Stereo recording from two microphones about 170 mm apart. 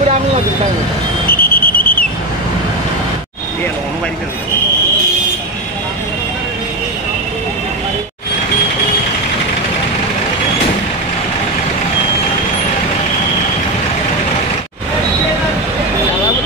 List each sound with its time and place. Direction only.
1.2 s vehicle: 60° left (ahead or behind)